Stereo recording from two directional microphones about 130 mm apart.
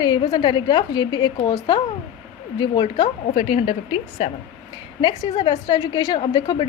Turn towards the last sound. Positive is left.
turn(degrees=35)  # may be behind; listen again after turning